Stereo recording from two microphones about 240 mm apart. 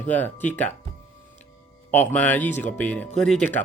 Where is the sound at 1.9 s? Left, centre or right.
Centre.